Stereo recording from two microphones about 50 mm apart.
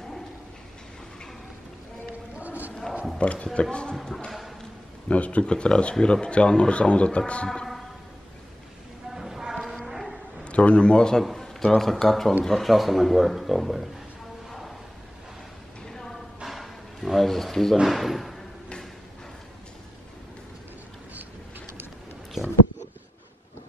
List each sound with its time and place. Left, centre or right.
2.4 s a sound: right
3.2 s a man's voice: left
3.7 s speech: centre
5.0 s speech: left
7.4 s music: centre
9.1 s clip-clop: centre
9.8 s music: centre
10.4 s a man's voice: left; by 13.8 s centre
15.9 s a sound: centre
17.8 s a man's voice: centre
21.1 s a sound: right